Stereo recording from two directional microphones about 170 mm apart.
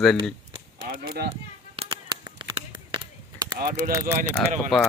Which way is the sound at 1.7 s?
25° right (ahead or behind).